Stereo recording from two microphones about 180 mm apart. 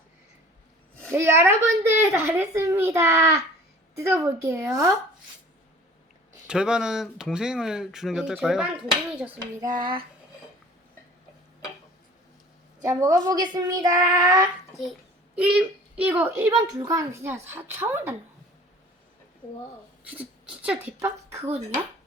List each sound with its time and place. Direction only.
1.1 s a child's voice: 15° right (ahead or behind)
6.5 s speech: 5° right (ahead or behind)
9.6 s child singing: 25° right (ahead or behind)
12.8 s a child's voice: 20° right (ahead or behind)
13.5 s child singing: 20° right (ahead or behind)
15.4 s a child's voice: 5° right (ahead or behind)
20.1 s speech: 10° right (ahead or behind)